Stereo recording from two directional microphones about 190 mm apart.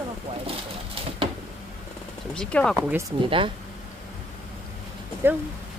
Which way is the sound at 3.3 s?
25° right (ahead or behind).